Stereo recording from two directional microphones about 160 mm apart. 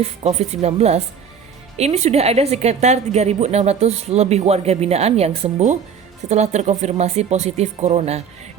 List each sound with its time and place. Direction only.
0.0 s a woman's voice: 40° right (ahead or behind)